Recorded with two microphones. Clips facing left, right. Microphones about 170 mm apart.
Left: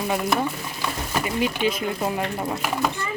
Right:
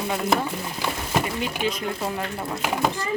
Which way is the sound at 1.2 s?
5° left (ahead or behind).